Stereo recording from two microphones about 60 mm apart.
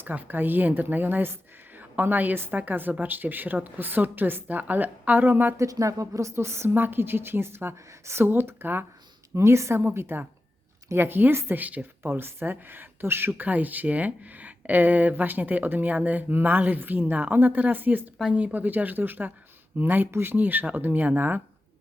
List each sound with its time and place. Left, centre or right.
0.0 s a woman's voice: right
5.5 s a woman's voice: right
9.3 s a woman's voice: right
13.3 s a woman's voice: right
20.1 s a woman's voice: right
20.3 s a woman's voice: right